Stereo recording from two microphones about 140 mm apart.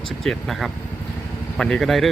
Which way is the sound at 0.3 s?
Centre (ahead or behind).